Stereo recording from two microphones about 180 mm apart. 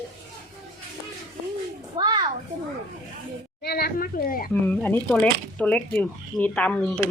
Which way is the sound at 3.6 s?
60° left (ahead or behind).